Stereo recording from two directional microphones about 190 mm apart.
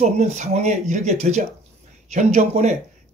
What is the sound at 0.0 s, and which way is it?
Speech, 40° right (ahead or behind).